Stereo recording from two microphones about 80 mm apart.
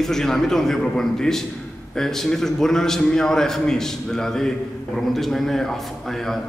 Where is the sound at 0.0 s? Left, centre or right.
Centre.